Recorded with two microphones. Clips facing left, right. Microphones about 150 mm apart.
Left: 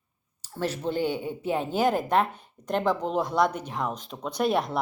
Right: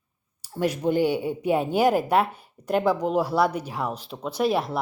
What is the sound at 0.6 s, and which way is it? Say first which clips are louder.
Speech: right 5 dB; 15° right (ahead or behind).